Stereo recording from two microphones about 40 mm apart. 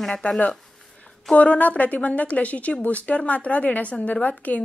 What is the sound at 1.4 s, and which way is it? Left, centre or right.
Speech, left.